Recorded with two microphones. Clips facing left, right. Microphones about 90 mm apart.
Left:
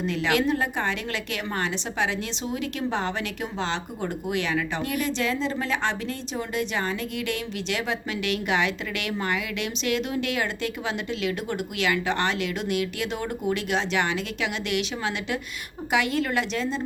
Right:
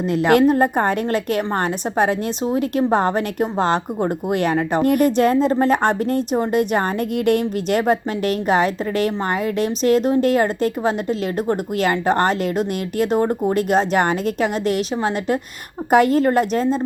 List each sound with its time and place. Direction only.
0.0 s a woman's voice: 45° right (ahead or behind)